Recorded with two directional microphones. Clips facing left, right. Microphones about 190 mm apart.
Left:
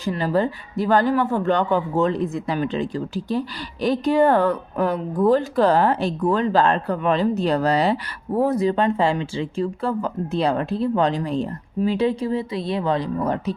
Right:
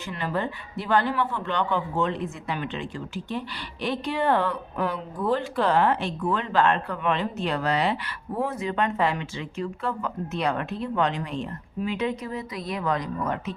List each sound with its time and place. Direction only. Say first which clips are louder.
0.0 s speech: left 8 dB; 35° left (ahead or behind)